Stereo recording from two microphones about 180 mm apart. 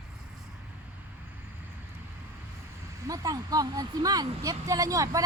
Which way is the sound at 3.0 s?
20° right (ahead or behind).